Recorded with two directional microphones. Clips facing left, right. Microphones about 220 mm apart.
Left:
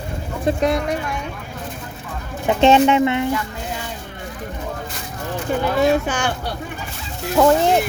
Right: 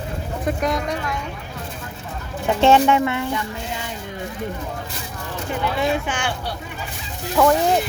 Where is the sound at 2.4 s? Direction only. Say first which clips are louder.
Left 2 dB; 20° left (ahead or behind).